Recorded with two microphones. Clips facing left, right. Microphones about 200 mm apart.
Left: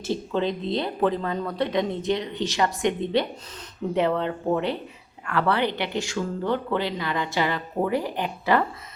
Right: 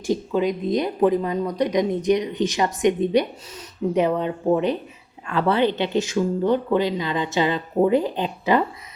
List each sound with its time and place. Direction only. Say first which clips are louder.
0.3 s speech: right 2 dB; 10° right (ahead or behind)